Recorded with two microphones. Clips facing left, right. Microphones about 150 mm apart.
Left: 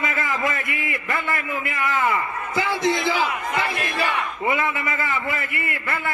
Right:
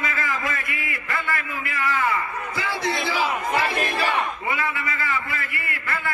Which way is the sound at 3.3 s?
30° right (ahead or behind).